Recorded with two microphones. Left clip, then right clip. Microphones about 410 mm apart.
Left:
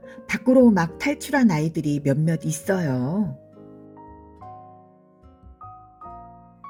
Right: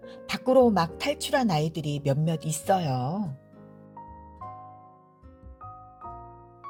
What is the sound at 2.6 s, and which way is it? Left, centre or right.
Speech, centre.